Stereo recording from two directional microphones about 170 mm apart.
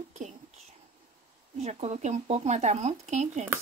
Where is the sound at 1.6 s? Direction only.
40° right (ahead or behind).